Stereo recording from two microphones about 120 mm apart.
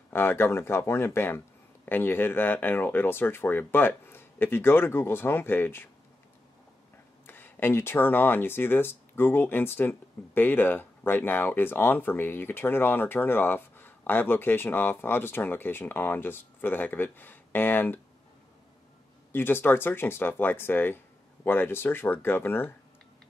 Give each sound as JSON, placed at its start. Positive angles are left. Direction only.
{"t": 0.1, "sound": "speech", "side_deg": 20}
{"t": 7.2, "sound": "speech", "side_deg": 15}
{"t": 19.3, "sound": "speech", "side_deg": 15}